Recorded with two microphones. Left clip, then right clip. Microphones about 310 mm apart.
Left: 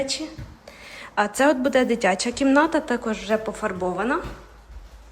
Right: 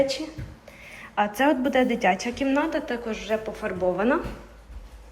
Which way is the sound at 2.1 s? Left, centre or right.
Left.